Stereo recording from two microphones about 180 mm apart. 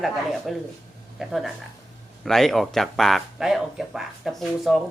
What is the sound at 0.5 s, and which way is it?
Speech, centre (ahead or behind).